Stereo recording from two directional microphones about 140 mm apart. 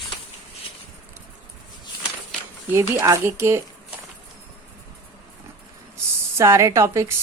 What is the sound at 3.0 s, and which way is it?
Speech, 20° right (ahead or behind).